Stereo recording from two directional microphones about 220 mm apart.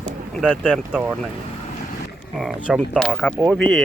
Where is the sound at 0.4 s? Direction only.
Centre (ahead or behind).